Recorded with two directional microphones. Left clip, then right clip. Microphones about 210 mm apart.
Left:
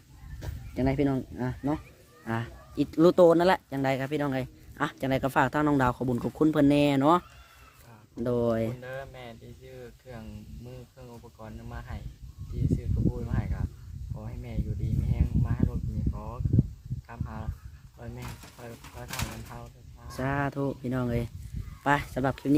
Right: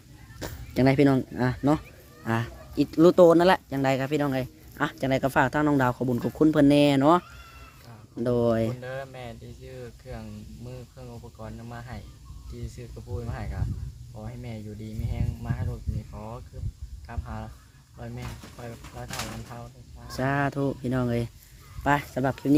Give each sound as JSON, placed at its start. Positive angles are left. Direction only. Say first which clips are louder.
{"t": 0.3, "sound": "speech", "louder": "right 7 dB", "side_deg": -20}
{"t": 2.2, "sound": "speech", "louder": "right 5 dB", "side_deg": -10}
{"t": 20.1, "sound": "speech", "louder": "right 4 dB", "side_deg": -10}